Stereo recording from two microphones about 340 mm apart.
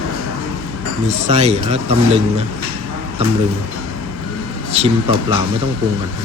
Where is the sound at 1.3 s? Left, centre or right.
Centre.